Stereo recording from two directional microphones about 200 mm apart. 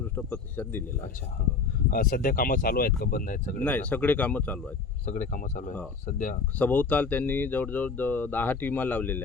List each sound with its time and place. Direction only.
0.2 s speech: 10° left (ahead or behind)
1.9 s speech: 45° left (ahead or behind)
3.6 s speech: 10° left (ahead or behind)
5.0 s speech: 40° left (ahead or behind)
6.6 s speech: 10° left (ahead or behind)